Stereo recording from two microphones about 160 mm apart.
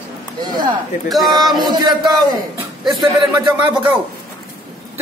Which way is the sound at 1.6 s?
25° right (ahead or behind).